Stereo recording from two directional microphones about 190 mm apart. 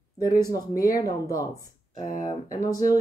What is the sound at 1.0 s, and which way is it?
Speech, 20° left (ahead or behind).